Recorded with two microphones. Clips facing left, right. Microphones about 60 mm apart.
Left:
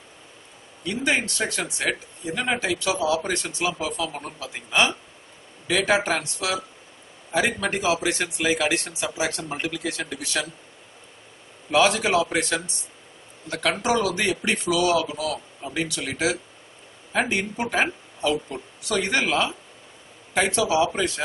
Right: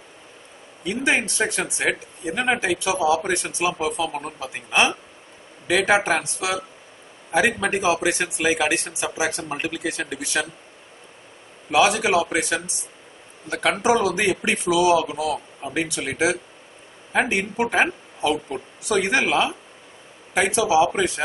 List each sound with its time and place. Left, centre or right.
0.8 s speech: centre
11.7 s speech: centre